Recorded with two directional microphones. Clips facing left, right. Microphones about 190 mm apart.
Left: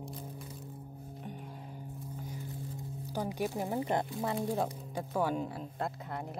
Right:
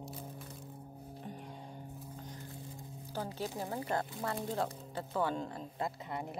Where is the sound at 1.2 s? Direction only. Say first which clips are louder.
Left 1 dB; centre (ahead or behind).